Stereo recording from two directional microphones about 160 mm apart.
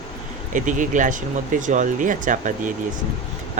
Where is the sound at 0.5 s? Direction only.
50° right (ahead or behind).